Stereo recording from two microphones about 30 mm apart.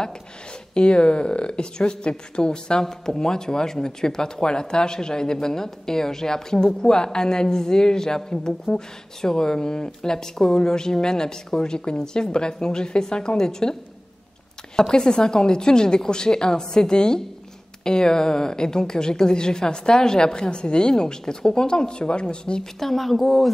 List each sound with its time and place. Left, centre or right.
0.7 s speech: left
2.8 s speech: centre
14.8 s speech: left
22.8 s a woman's voice: centre